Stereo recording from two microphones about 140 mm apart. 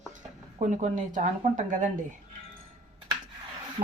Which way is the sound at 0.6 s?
60° right (ahead or behind).